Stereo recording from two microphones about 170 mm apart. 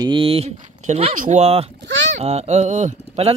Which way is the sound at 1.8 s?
90° right.